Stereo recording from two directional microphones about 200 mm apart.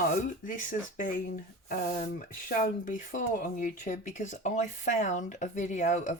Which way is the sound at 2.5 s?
40° left (ahead or behind).